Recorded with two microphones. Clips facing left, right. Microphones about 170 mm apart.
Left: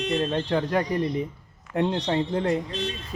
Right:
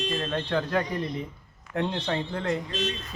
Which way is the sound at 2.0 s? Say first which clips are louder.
Left 5 dB; 20° left (ahead or behind).